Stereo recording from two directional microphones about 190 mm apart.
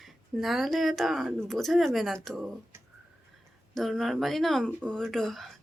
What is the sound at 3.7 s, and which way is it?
Speech, centre (ahead or behind).